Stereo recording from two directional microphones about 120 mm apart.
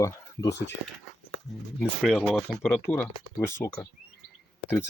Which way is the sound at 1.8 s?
Centre (ahead or behind).